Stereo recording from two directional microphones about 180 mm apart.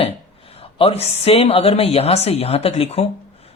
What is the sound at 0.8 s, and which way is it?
Speech, 30° left (ahead or behind).